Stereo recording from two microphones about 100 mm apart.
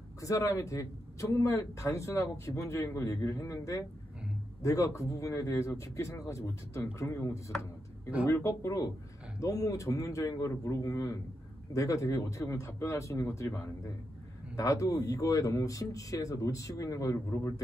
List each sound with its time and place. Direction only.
0.2 s speech: 30° left (ahead or behind)
14.6 s speech: 30° left (ahead or behind)